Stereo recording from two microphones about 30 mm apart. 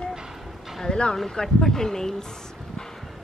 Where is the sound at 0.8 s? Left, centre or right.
Left.